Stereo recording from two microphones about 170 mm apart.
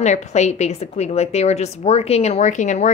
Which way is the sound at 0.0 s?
45° left (ahead or behind).